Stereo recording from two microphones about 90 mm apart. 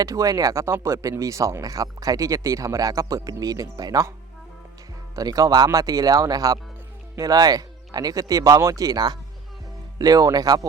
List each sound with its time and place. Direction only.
0.0 s speech: 40° right (ahead or behind)
5.1 s speech: 40° right (ahead or behind)